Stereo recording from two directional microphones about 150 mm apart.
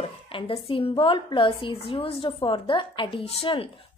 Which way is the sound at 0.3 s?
35° left (ahead or behind).